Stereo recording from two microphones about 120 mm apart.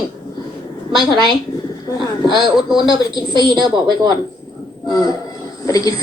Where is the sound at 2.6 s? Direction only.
5° right (ahead or behind).